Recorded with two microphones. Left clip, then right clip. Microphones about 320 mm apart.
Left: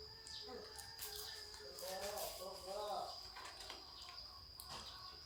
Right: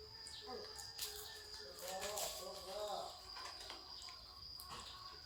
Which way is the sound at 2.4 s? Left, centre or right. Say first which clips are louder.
Even; centre.